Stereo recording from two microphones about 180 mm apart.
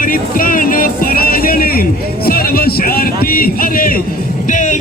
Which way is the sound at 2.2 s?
55° left (ahead or behind).